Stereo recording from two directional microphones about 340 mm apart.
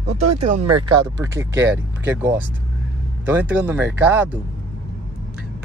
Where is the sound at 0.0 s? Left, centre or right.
Right.